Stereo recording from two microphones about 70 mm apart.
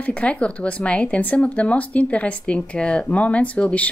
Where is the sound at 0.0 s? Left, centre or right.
Centre.